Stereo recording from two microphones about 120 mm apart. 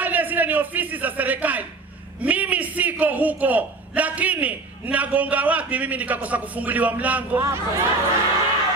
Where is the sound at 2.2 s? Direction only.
10° right (ahead or behind).